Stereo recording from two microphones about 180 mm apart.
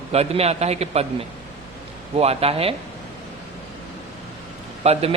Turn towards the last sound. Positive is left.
turn(degrees=-35)  # may be behind; listen again after turning